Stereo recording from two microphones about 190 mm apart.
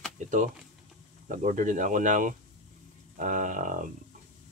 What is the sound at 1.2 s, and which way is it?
Speech, 45° right (ahead or behind).